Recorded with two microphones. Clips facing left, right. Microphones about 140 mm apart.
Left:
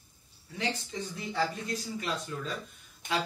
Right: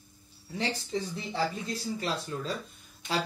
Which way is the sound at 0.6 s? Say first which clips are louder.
Right 3 dB; 30° right (ahead or behind).